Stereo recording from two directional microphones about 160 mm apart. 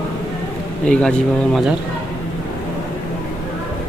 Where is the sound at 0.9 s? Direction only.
5° left (ahead or behind).